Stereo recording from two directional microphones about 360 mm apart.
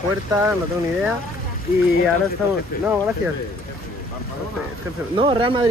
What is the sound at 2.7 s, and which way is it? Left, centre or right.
Speech, left.